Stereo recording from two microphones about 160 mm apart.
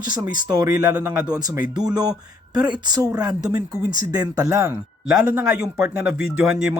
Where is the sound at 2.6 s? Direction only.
25° right (ahead or behind).